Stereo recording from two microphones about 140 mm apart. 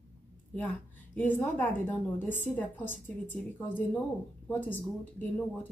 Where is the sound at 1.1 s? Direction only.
15° left (ahead or behind).